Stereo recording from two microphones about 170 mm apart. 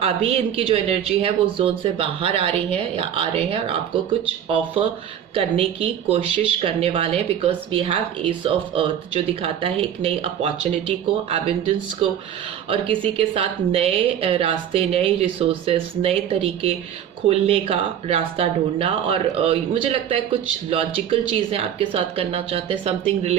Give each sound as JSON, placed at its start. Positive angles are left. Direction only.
{"t": 0.0, "sound": "speech", "side_deg": -35}
{"t": 12.7, "sound": "speech", "side_deg": -30}